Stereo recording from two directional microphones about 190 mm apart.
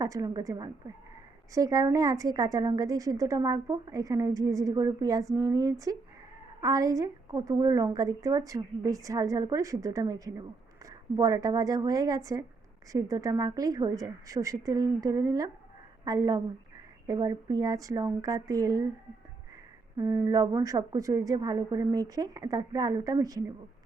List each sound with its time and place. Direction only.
0.0 s a woman's voice: 20° right (ahead or behind)
20.0 s a woman's voice: 15° right (ahead or behind)